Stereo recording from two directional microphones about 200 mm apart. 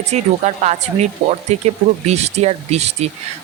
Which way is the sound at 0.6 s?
35° right (ahead or behind).